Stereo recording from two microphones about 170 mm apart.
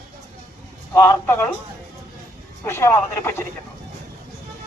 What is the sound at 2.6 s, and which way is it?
Speech, 15° left (ahead or behind).